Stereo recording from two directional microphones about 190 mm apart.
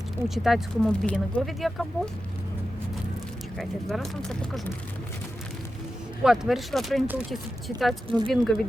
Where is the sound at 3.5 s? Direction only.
Centre (ahead or behind).